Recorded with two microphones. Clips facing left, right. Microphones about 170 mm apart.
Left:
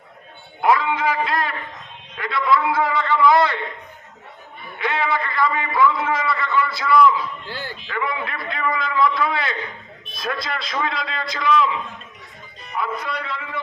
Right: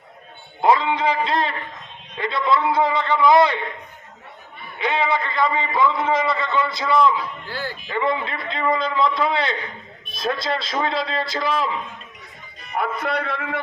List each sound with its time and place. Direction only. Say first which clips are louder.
0.6 s a man's voice: right 1 dB; 25° right (ahead or behind)
4.8 s a man's voice: right 1 dB; 20° right (ahead or behind); by 11.7 s 35° right (ahead or behind)
12.7 s a man's voice: right 3 dB; 60° right (ahead or behind)